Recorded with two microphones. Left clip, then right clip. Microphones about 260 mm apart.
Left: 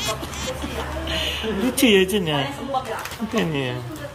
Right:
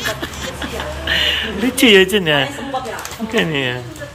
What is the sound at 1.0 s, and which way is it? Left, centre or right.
A man's voice, centre.